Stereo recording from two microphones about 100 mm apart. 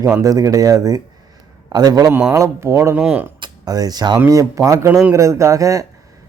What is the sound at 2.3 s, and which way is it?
Speech, 30° right (ahead or behind).